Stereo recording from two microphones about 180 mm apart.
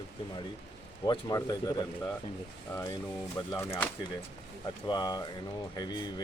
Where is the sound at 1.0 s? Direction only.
20° left (ahead or behind).